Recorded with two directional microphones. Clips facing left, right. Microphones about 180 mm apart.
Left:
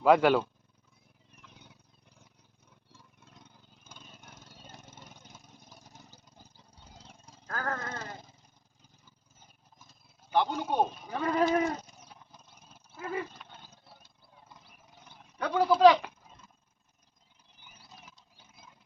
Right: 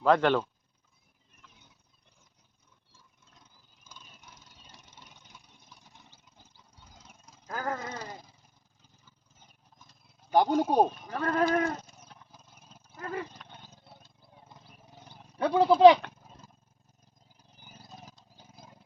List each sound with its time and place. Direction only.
0.0 s speech: 10° left (ahead or behind)
2.9 s a sound: 65° left (ahead or behind)
3.8 s vehicle: 55° left (ahead or behind); by 7.3 s 30° left (ahead or behind)
7.4 s a sound: 10° right (ahead or behind)
9.7 s a sound: 5° left (ahead or behind)
10.3 s speech: 40° right (ahead or behind)
10.9 s speech: 5° left (ahead or behind)
11.5 s livestock: centre (ahead or behind)
13.0 s dog: 5° left (ahead or behind)
13.5 s dog: 20° right (ahead or behind)
15.4 s speech: 30° right (ahead or behind)
17.6 s a sound: 40° right (ahead or behind)